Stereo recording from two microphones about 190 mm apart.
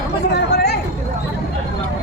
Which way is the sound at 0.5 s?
60° left (ahead or behind).